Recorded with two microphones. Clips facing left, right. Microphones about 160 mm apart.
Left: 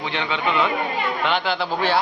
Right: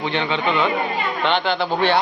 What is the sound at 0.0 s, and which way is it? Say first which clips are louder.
A man's voice: right 3 dB; centre (ahead or behind).